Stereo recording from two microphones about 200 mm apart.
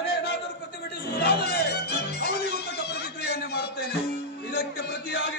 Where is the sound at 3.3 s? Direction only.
55° left (ahead or behind).